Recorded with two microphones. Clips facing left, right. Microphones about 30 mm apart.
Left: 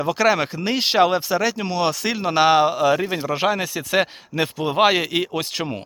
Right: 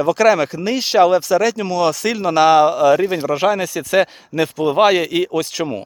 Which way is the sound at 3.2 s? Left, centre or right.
Left.